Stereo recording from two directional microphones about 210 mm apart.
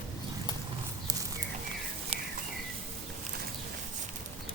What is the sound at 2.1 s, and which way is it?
Bird, 25° right (ahead or behind).